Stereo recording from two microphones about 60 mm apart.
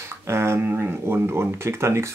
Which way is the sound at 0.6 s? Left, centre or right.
Right.